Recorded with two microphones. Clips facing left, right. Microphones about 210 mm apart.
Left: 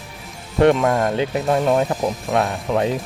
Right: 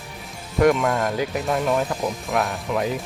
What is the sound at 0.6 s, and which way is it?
Speech, 30° left (ahead or behind).